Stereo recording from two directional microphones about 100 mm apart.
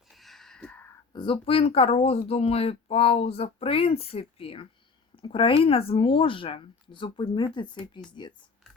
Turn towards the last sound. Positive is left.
turn(degrees=50)  # may be behind; listen again after turning